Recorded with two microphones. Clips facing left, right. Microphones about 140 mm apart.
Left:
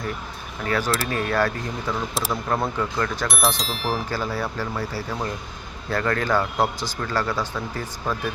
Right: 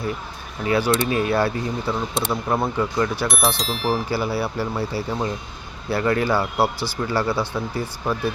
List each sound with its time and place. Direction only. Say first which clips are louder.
0.6 s speech: right 4 dB; 15° right (ahead or behind)
2.1 s speech: right 2 dB; centre (ahead or behind)
2.5 s speech: right 2 dB; 10° right (ahead or behind)
3.2 s speech: right 2 dB; centre (ahead or behind)
6.7 s speech: right 3 dB; 15° left (ahead or behind)
7.0 s speech: right 3 dB; 10° right (ahead or behind)